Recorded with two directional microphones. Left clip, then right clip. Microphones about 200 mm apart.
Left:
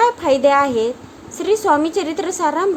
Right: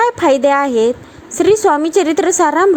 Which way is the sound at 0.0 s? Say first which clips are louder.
Right 2 dB; 30° right (ahead or behind).